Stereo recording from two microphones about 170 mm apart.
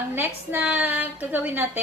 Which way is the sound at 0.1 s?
10° right (ahead or behind).